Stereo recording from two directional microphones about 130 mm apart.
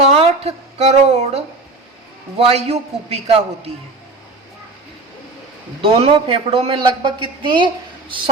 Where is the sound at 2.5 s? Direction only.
50° right (ahead or behind).